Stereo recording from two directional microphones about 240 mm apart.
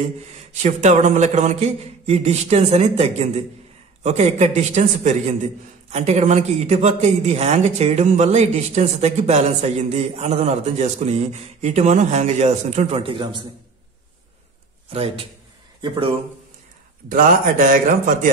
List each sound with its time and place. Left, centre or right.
0.6 s a man's voice: right
14.9 s a man's voice: right
17.1 s a man's voice: right